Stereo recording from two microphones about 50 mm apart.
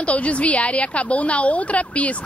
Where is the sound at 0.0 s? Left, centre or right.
Left.